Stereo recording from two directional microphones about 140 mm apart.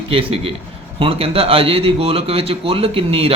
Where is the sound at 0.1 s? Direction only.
40° right (ahead or behind).